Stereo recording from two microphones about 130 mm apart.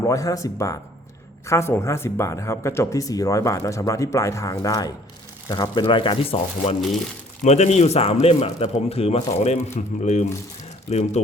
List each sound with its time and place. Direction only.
0.0 s a woman's voice: 25° left (ahead or behind); by 6.7 s 45° left (ahead or behind)
7.4 s speech: 60° left (ahead or behind)